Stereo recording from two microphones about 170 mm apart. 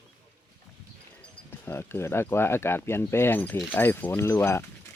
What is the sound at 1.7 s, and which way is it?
Speech, 15° left (ahead or behind).